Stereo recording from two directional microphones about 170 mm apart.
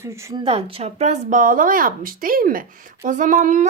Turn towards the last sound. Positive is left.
turn(degrees=-50)  # may be behind; listen again after turning